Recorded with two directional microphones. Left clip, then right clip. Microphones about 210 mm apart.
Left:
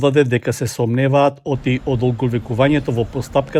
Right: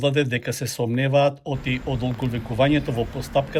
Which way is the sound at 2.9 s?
90° left.